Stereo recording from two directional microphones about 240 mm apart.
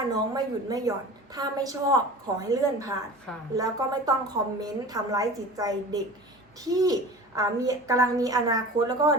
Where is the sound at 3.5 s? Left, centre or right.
Centre.